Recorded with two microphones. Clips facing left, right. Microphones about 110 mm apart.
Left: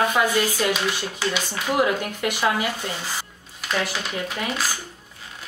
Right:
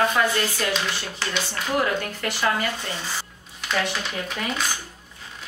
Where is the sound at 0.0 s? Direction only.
10° left (ahead or behind).